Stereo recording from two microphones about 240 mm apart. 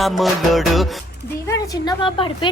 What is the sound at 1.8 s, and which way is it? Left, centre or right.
Speech, centre.